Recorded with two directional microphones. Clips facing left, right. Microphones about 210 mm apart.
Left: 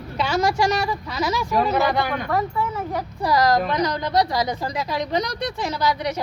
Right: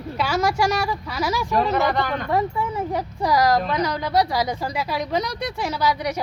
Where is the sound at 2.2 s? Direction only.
15° right (ahead or behind).